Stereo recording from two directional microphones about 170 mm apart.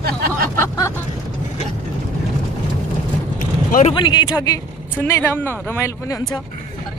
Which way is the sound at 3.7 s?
45° left (ahead or behind).